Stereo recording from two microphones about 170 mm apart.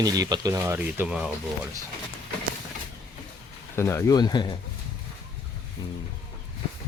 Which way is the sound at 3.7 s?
15° left (ahead or behind).